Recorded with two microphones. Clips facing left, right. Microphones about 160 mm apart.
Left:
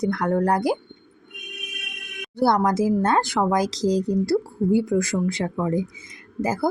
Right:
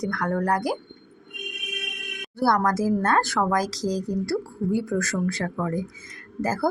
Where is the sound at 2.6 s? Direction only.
20° left (ahead or behind).